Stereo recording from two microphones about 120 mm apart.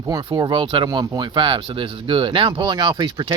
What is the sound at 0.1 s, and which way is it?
Speech, 35° right (ahead or behind).